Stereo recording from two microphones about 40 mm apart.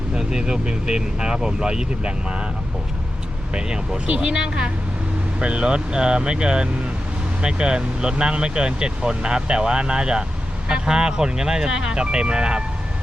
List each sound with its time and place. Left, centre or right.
0.1 s speech: centre
3.5 s speech: right